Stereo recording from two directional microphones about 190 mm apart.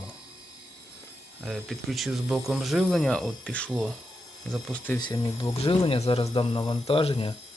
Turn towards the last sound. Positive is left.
turn(degrees=30)  # may be behind; listen again after turning